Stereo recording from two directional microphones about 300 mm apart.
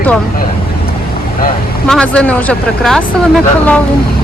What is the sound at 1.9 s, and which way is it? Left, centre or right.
Speech, centre.